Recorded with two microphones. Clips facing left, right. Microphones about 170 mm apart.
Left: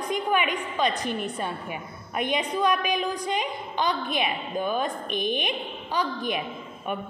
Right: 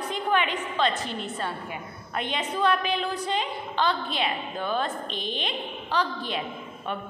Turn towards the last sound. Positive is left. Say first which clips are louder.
# left 1 dB
turn(degrees=15)  # may be behind; listen again after turning